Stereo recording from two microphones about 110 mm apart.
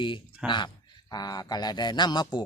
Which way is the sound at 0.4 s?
45° left (ahead or behind).